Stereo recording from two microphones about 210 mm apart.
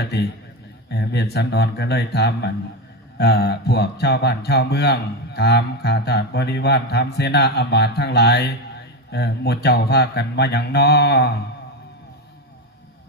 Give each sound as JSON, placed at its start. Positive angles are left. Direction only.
{"t": 0.0, "sound": "a man's voice", "side_deg": 50}